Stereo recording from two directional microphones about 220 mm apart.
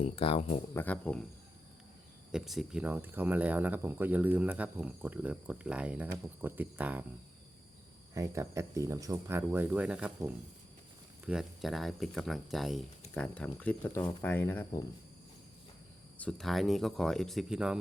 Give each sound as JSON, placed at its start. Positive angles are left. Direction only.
{"t": 0.0, "sound": "speech", "side_deg": 25}
{"t": 0.7, "sound": "speech", "side_deg": 10}
{"t": 2.3, "sound": "speech", "side_deg": 0}
{"t": 8.1, "sound": "speech", "side_deg": -15}
{"t": 16.1, "sound": "speech", "side_deg": 5}